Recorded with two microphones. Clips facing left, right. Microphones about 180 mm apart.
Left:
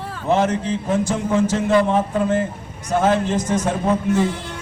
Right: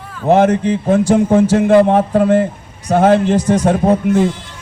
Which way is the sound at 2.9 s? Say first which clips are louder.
Right 6 dB; 60° right (ahead or behind).